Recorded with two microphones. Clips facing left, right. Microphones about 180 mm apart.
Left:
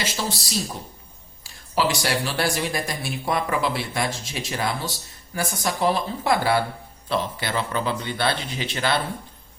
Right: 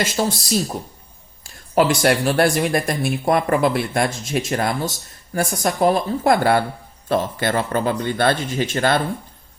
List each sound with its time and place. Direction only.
0.0 s speech: 50° right (ahead or behind)
1.5 s speech: 50° right (ahead or behind)